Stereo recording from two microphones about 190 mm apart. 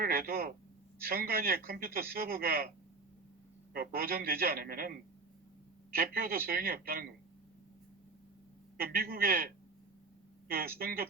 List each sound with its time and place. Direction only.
0.0 s a man's voice: 50° right (ahead or behind)
8.8 s a man's voice: 50° right (ahead or behind)
10.5 s a man's voice: 50° right (ahead or behind)